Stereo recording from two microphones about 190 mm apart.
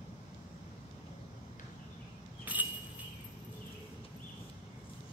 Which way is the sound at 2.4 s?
10° right (ahead or behind).